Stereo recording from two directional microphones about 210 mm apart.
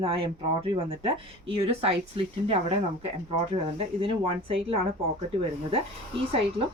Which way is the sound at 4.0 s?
25° right (ahead or behind).